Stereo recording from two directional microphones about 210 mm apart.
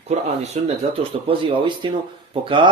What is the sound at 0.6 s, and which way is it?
Speech, 30° right (ahead or behind).